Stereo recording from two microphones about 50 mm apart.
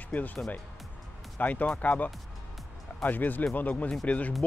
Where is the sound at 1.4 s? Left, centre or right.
Left.